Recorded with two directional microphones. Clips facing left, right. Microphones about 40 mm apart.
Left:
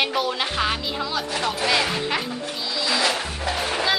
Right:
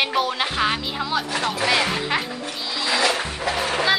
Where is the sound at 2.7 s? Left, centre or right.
Centre.